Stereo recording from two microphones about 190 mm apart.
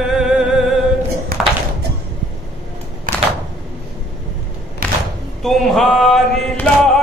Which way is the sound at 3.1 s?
45° right (ahead or behind).